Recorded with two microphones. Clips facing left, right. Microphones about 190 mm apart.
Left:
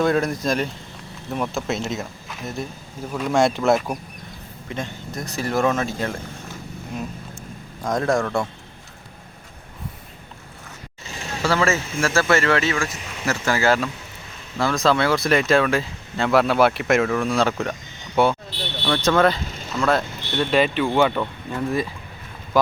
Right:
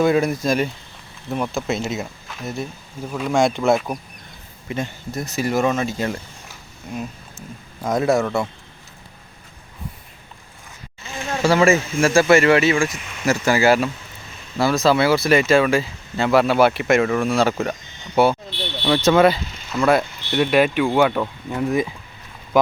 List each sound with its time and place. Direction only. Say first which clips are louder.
0.0 s speech: right 3 dB; 5° right (ahead or behind)
3.1 s speech: right 1 dB; centre (ahead or behind)
7.9 s speech: right 3 dB; 5° right (ahead or behind)
11.4 s speech: right 5 dB; 10° right (ahead or behind)
18.5 s vehicle: right 2 dB; 40° left (ahead or behind)
18.9 s speech: right 3 dB; 10° right (ahead or behind)